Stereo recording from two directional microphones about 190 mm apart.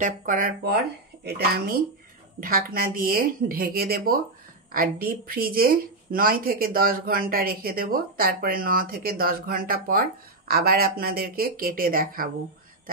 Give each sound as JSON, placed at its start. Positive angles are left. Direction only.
{"t": 0.0, "sound": "a woman's voice", "side_deg": -45}
{"t": 2.4, "sound": "a woman's voice", "side_deg": -50}